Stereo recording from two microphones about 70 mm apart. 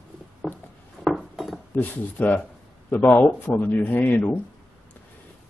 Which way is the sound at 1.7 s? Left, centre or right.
Left.